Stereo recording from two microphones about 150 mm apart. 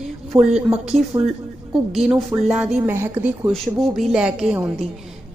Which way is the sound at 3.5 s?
Centre (ahead or behind).